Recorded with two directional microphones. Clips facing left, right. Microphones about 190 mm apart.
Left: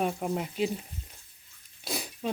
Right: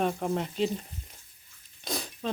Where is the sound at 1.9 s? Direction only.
10° left (ahead or behind).